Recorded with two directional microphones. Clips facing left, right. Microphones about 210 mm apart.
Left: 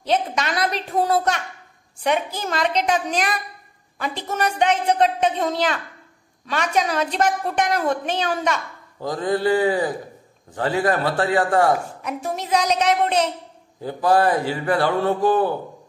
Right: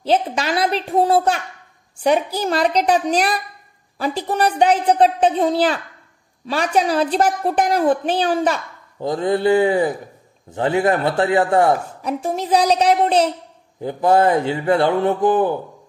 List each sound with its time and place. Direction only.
0.0 s a woman's voice: 30° right (ahead or behind)
13.8 s a woman's voice: 20° right (ahead or behind)